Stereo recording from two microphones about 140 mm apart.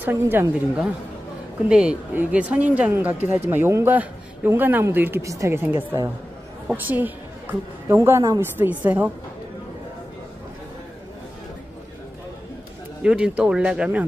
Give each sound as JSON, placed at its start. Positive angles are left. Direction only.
{"t": 0.0, "sound": "speech", "side_deg": -15}
{"t": 1.7, "sound": "a woman's voice", "side_deg": -5}
{"t": 13.0, "sound": "speech", "side_deg": -5}